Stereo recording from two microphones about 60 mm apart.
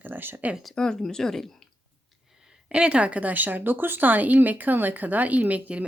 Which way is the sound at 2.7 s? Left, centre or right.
Centre.